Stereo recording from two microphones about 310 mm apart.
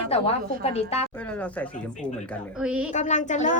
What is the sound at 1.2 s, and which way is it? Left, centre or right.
A woman's voice, centre.